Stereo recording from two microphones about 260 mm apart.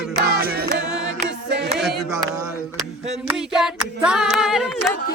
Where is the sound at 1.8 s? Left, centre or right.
Centre.